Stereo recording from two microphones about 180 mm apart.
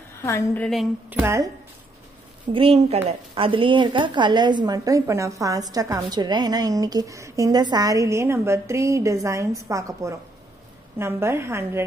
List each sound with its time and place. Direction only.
0.2 s a woman's voice: 15° left (ahead or behind)
1.1 s a woman's voice: 15° right (ahead or behind)
2.5 s a woman's voice: 30° right (ahead or behind); by 11.8 s 15° right (ahead or behind)